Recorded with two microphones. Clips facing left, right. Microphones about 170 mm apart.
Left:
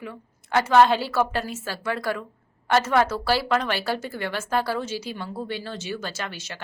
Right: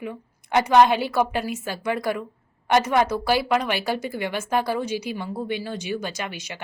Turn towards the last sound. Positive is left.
turn(degrees=-15)  # may be behind; listen again after turning